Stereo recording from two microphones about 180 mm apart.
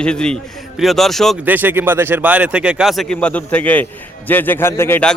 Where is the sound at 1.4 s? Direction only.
10° right (ahead or behind).